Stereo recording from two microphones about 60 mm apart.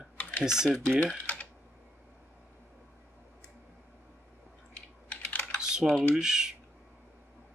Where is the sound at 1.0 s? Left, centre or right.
Left.